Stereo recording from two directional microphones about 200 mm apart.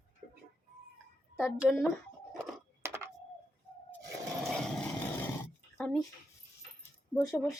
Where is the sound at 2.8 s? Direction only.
15° right (ahead or behind).